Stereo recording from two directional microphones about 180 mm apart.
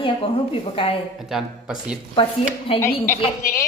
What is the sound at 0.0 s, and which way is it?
Speech, 30° left (ahead or behind).